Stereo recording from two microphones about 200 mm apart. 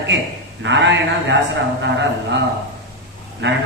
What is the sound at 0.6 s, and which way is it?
Speech, 65° right (ahead or behind).